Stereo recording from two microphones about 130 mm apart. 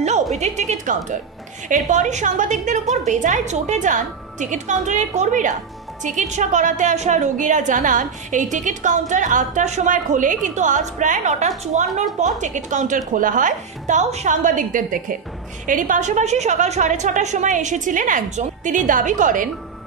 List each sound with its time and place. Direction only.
0.4 s a woman's voice: 65° right (ahead or behind); by 19.5 s 85° right